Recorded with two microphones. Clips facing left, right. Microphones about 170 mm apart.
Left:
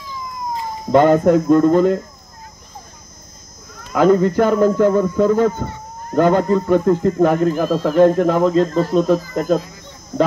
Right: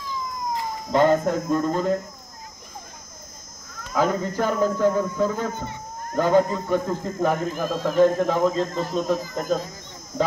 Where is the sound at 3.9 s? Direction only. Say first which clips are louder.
Left 10 dB; 65° left (ahead or behind).